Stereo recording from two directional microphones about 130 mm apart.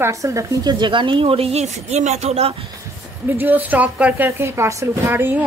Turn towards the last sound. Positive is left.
turn(degrees=-15)  # may be behind; listen again after turning